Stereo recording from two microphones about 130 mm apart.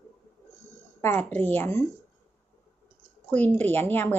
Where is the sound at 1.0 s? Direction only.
15° left (ahead or behind).